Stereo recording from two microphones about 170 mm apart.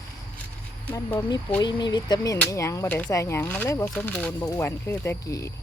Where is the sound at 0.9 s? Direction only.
20° left (ahead or behind).